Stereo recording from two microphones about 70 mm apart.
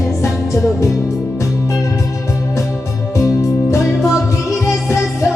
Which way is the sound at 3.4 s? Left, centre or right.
Left.